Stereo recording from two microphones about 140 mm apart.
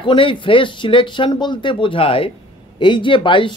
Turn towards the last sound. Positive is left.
turn(degrees=35)  # may be behind; listen again after turning